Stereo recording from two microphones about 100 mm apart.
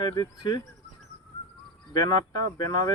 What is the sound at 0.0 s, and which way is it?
Speech, 45° left (ahead or behind).